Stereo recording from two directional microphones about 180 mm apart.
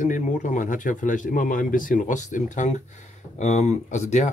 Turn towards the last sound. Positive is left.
turn(degrees=40)  # may be behind; listen again after turning